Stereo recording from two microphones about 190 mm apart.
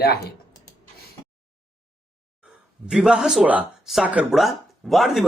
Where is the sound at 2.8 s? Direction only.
5° right (ahead or behind).